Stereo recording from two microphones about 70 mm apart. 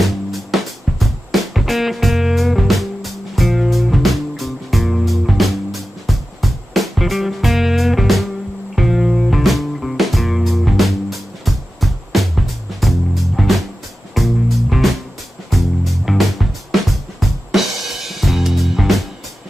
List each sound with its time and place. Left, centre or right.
0.0 s music: centre